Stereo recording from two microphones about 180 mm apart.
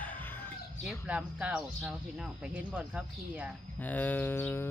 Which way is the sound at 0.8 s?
5° right (ahead or behind).